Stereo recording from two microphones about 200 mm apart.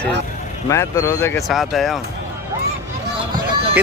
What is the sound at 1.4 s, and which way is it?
Speech, centre (ahead or behind).